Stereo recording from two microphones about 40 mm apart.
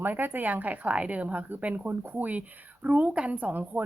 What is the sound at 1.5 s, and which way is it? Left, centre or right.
Speech, right.